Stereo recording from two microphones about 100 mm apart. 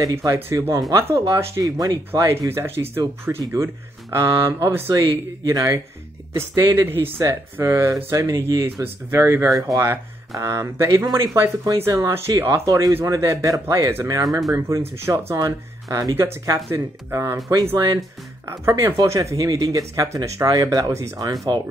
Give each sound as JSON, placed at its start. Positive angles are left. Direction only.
{"t": 0.0, "sound": "speech", "side_deg": -30}
{"t": 0.9, "sound": "speech", "side_deg": -25}
{"t": 12.6, "sound": "speech", "side_deg": -40}
{"t": 18.5, "sound": "speech", "side_deg": -30}